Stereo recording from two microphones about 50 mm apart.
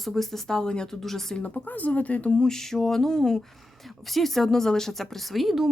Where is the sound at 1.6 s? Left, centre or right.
Left.